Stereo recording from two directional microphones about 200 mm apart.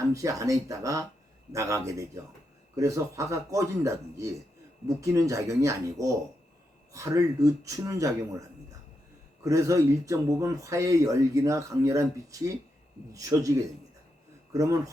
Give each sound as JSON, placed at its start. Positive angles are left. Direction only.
{"t": 0.1, "sound": "speech", "side_deg": -15}